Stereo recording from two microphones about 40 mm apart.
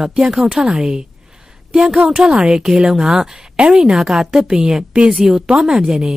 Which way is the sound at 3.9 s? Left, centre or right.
Centre.